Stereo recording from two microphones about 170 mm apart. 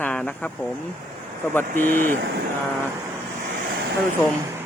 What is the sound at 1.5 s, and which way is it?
Speech, 10° left (ahead or behind).